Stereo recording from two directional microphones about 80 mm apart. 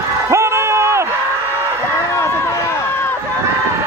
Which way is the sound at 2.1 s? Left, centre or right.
Left.